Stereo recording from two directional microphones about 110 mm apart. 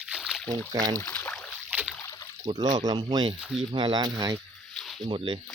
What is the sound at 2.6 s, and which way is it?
Speech, 35° right (ahead or behind).